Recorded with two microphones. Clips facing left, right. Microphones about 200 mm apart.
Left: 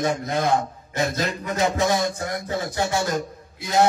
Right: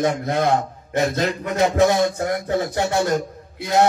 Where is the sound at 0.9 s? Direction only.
60° right (ahead or behind).